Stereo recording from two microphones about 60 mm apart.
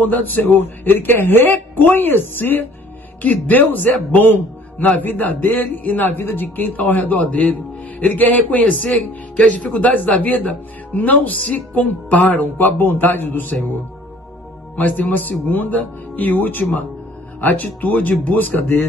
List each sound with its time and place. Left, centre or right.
0.0 s a man's voice: left
14.8 s a man's voice: left